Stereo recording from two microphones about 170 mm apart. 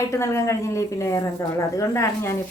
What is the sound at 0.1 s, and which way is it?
A woman's voice, 15° left (ahead or behind).